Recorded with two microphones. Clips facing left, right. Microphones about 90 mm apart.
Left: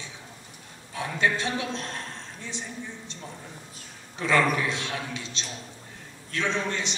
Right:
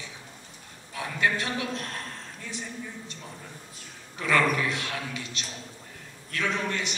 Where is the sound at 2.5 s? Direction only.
25° left (ahead or behind).